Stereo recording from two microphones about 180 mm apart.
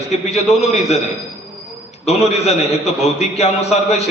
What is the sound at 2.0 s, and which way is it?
A man's voice, 35° left (ahead or behind).